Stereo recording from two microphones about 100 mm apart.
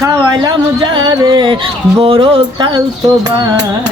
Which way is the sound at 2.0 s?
65° right (ahead or behind).